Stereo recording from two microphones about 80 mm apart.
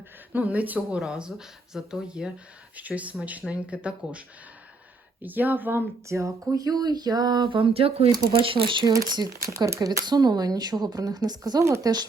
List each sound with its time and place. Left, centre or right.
0.3 s speech: centre
5.2 s speech: right
6.1 s speech: right
8.9 s speech: right
9.3 s speech: right
10.1 s speech: right
11.6 s speech: right